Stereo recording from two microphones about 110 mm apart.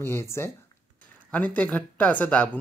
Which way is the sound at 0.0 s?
25° left (ahead or behind).